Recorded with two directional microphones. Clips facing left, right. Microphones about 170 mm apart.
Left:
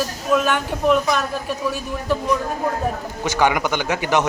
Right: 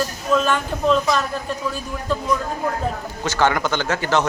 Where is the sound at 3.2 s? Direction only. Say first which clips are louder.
Left 1 dB; 15° left (ahead or behind).